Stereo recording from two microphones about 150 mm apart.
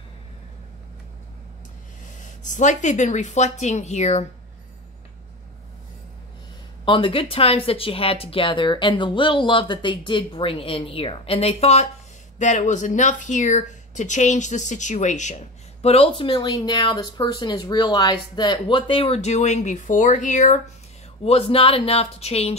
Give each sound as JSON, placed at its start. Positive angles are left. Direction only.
{"t": 2.0, "sound": "speech", "side_deg": 55}
{"t": 6.8, "sound": "speech", "side_deg": 35}
{"t": 21.2, "sound": "speech", "side_deg": 40}